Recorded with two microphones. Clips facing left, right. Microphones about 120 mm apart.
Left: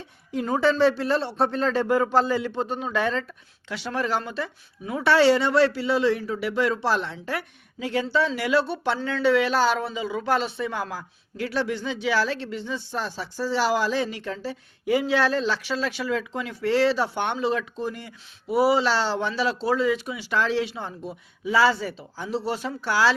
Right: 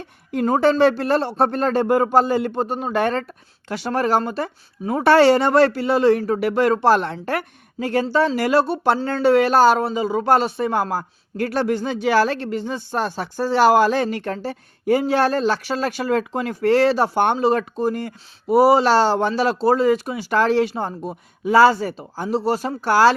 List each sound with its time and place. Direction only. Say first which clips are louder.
0.0 s speech: right 7 dB; 55° right (ahead or behind)